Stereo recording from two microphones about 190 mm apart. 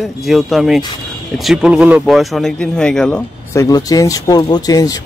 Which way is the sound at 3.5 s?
20° left (ahead or behind).